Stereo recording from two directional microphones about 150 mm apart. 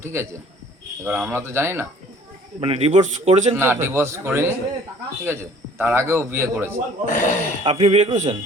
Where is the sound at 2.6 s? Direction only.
40° right (ahead or behind).